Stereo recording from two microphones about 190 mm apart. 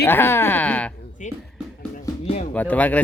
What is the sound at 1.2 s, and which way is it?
Speech, 40° left (ahead or behind).